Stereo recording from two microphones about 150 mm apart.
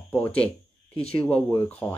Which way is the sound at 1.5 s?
10° left (ahead or behind).